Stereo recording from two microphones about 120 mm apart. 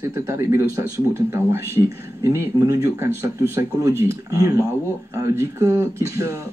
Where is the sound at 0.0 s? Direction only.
25° right (ahead or behind).